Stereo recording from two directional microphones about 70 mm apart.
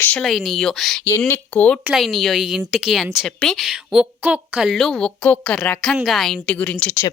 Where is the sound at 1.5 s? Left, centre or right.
Left.